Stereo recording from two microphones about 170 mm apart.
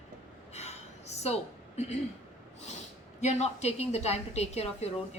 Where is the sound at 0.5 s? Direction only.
40° left (ahead or behind).